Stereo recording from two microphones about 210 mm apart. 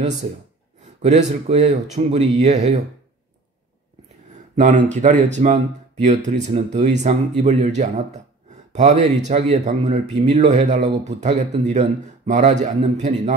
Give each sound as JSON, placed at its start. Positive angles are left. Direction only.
{"t": 1.0, "sound": "speech", "side_deg": -30}
{"t": 4.6, "sound": "speech", "side_deg": -35}